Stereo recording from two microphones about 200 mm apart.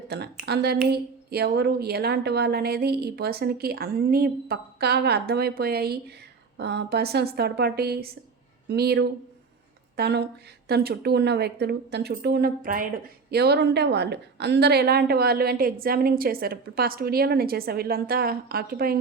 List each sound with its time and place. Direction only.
0.1 s a woman's voice: 55° right (ahead or behind)
13.3 s a woman's voice: 55° right (ahead or behind)